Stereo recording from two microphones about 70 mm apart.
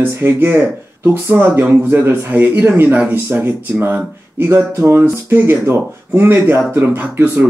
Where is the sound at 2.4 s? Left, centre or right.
Centre.